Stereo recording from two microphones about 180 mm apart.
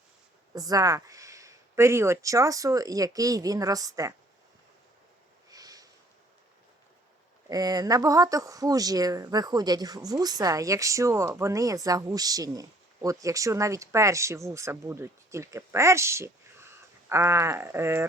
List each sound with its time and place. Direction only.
0.5 s speech: 20° right (ahead or behind)
5.5 s sniff: 20° right (ahead or behind)
7.5 s speech: 20° right (ahead or behind)